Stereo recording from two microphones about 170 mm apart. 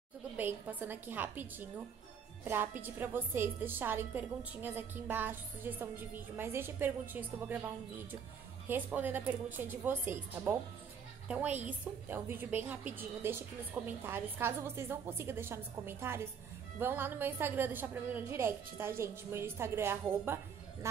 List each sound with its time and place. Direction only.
0.4 s a woman's voice: 10° right (ahead or behind)
11.2 s a woman's voice: 10° right (ahead or behind)